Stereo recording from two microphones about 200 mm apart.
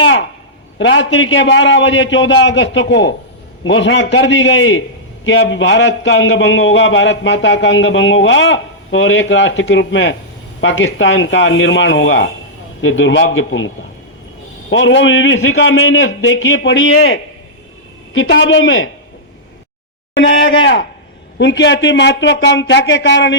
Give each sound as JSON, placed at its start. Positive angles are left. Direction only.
{"t": 0.0, "sound": "a sound", "side_deg": 70}
{"t": 0.8, "sound": "speech", "side_deg": 70}
{"t": 14.7, "sound": "speech", "side_deg": 70}
{"t": 20.2, "sound": "speech", "side_deg": 70}